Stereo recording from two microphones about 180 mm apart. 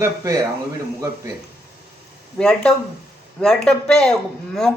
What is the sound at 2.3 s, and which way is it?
A man's voice, 5° left (ahead or behind).